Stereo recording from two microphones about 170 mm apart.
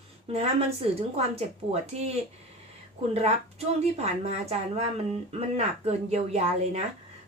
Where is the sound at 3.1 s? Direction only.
40° right (ahead or behind).